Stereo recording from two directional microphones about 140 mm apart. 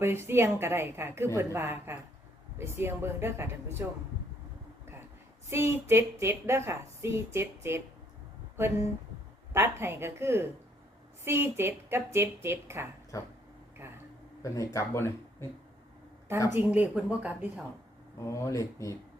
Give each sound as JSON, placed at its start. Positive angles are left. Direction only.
{"t": 0.0, "sound": "a woman's voice", "side_deg": -15}
{"t": 5.5, "sound": "a woman's voice", "side_deg": -15}
{"t": 13.1, "sound": "speech", "side_deg": 25}
{"t": 14.4, "sound": "speech", "side_deg": 20}
{"t": 16.5, "sound": "a woman's voice", "side_deg": -10}
{"t": 18.2, "sound": "speech", "side_deg": 20}